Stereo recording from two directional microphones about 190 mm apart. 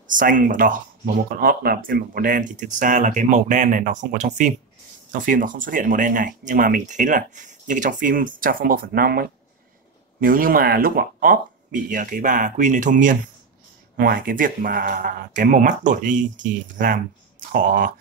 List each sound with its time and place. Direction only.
0.0 s speech: 45° right (ahead or behind)